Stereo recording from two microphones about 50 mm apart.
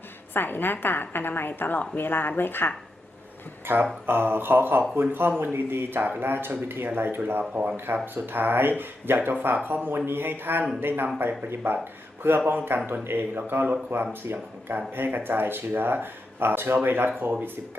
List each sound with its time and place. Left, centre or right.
0.3 s a woman's voice: left
3.7 s speech: right